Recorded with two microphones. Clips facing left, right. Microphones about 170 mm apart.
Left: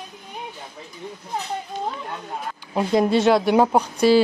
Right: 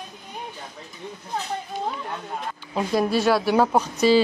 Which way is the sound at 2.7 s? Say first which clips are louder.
Left 3 dB; 20° left (ahead or behind).